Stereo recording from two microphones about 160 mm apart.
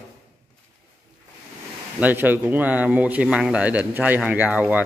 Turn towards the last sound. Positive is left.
turn(degrees=-10)  # may be behind; listen again after turning